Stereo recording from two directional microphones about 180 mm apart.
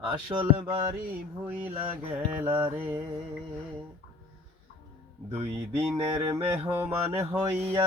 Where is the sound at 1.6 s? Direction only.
10° right (ahead or behind).